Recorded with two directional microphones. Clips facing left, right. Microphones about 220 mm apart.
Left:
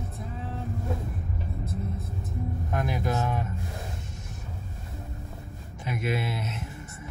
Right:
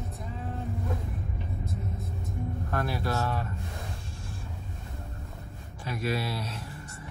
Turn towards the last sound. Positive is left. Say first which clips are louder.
# left 1 dB
turn(degrees=20)  # may be behind; listen again after turning